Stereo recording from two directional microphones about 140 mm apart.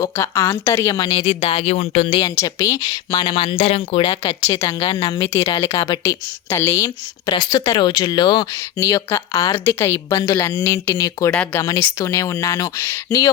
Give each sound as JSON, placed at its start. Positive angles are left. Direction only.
{"t": 0.0, "sound": "a woman's voice", "side_deg": 20}
{"t": 2.2, "sound": "speech", "side_deg": 20}
{"t": 3.6, "sound": "speech", "side_deg": 45}
{"t": 4.9, "sound": "speech", "side_deg": 25}
{"t": 7.3, "sound": "speech", "side_deg": 30}